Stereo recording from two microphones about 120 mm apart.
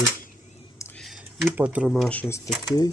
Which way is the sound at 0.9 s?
Centre (ahead or behind).